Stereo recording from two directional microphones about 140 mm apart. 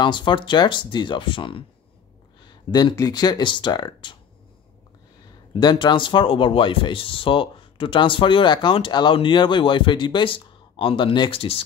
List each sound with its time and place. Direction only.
0.0 s speech: 35° left (ahead or behind)
5.5 s speech: 30° left (ahead or behind)